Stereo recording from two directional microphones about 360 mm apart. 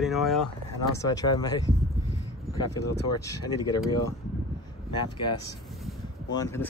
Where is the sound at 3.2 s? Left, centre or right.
Centre.